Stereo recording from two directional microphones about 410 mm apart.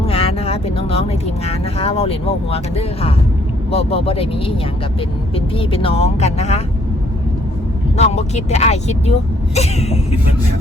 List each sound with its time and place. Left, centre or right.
0.0 s vehicle: centre
1.5 s speech: centre
7.9 s speech: centre